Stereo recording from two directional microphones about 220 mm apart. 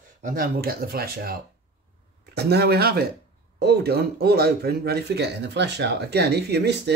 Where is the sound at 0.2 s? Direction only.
40° right (ahead or behind).